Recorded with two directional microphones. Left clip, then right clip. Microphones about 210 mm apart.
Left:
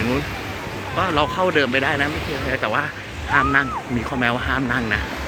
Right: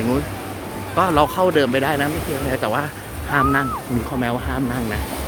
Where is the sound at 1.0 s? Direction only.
25° right (ahead or behind); by 5.0 s 10° right (ahead or behind).